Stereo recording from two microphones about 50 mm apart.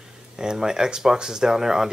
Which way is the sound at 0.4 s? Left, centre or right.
Centre.